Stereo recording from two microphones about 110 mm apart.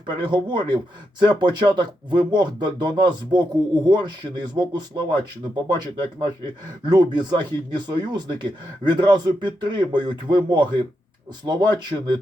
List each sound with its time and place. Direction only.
0.0 s speech: 45° right (ahead or behind)